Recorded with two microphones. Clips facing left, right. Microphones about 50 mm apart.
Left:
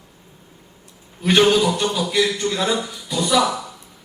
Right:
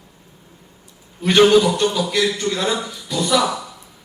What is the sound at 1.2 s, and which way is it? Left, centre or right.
A man's voice, centre.